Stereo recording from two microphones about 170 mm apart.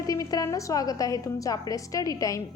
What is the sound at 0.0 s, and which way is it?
A woman's voice, 20° left (ahead or behind).